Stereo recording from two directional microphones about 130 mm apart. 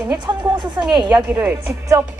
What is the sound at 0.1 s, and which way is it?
Speech, 35° right (ahead or behind).